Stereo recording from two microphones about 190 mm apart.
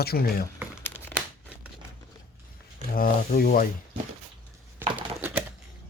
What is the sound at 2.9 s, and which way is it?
Speech, 50° left (ahead or behind).